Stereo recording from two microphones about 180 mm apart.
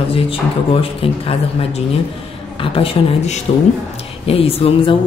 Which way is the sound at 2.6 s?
30° left (ahead or behind).